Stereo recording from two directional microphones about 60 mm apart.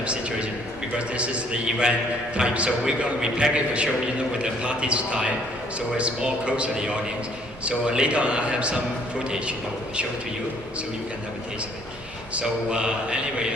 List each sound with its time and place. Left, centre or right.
0.0 s a man's voice: centre
12.3 s a man's voice: centre